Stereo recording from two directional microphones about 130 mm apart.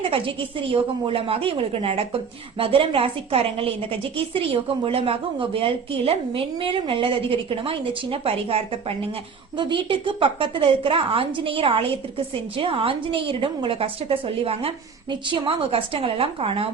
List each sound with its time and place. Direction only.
0.1 s a woman's voice: 45° right (ahead or behind)